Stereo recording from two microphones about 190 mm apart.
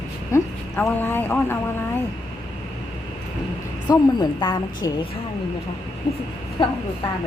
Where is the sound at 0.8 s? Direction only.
10° left (ahead or behind).